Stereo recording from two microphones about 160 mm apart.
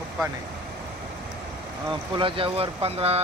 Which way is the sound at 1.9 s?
30° right (ahead or behind).